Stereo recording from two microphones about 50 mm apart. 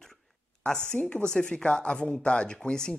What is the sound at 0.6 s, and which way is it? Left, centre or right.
A woman's voice, centre.